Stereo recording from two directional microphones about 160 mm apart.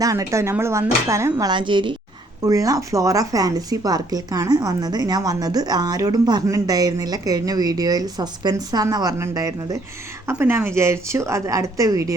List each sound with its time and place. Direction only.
0.0 s a woman's voice: 20° right (ahead or behind)